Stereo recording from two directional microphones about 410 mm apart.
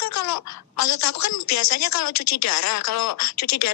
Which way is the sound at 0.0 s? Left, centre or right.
Left.